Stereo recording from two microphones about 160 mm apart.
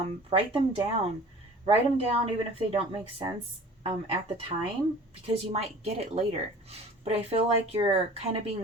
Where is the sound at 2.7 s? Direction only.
35° right (ahead or behind).